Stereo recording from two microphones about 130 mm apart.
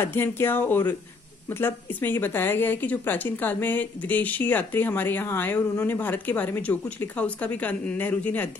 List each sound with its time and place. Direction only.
0.0 s speech: 15° left (ahead or behind)